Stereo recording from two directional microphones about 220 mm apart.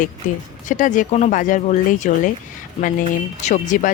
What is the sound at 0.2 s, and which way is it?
Speech, 35° left (ahead or behind).